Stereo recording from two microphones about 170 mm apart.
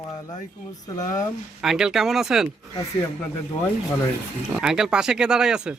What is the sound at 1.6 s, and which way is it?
Speech, centre (ahead or behind).